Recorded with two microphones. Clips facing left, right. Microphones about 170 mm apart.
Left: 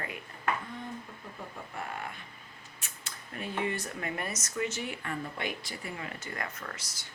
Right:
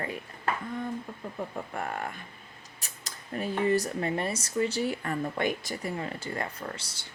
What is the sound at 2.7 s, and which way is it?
Speech, 40° right (ahead or behind).